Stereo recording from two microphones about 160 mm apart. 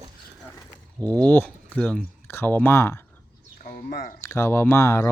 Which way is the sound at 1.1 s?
10° left (ahead or behind).